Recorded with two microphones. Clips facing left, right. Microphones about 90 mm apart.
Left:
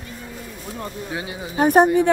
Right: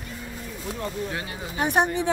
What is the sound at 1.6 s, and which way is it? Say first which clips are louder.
Speech: left 8 dB; 40° left (ahead or behind).